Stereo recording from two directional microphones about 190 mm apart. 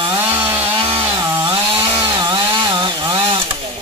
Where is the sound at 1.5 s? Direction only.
25° right (ahead or behind).